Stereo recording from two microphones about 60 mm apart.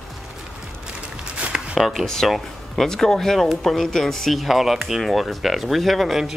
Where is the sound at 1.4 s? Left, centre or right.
Right.